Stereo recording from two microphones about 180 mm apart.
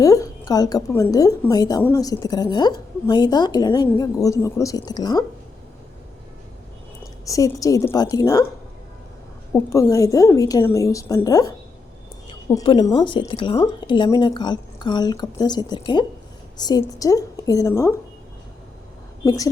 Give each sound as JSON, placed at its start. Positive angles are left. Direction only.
{"t": 0.0, "sound": "a woman's voice", "side_deg": 20}
{"t": 7.3, "sound": "a woman's voice", "side_deg": 20}
{"t": 9.5, "sound": "a woman's voice", "side_deg": 15}
{"t": 12.6, "sound": "a woman's voice", "side_deg": 25}
{"t": 19.2, "sound": "a woman's voice", "side_deg": 20}